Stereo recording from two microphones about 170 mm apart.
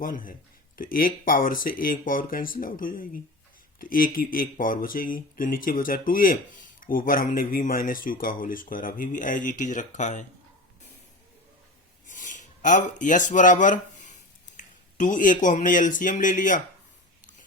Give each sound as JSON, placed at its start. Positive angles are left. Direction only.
{"t": 0.0, "sound": "speech", "side_deg": 55}
{"t": 12.0, "sound": "a sound", "side_deg": 50}
{"t": 14.9, "sound": "speech", "side_deg": 50}